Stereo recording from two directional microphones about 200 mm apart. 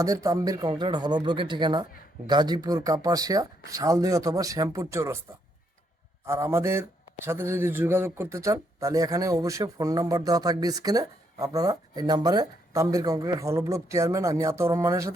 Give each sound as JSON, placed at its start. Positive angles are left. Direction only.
{"t": 0.0, "sound": "speech", "side_deg": -15}
{"t": 6.2, "sound": "speech", "side_deg": -15}